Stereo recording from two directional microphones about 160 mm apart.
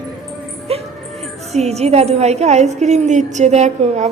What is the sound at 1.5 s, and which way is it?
A woman's voice, 40° right (ahead or behind).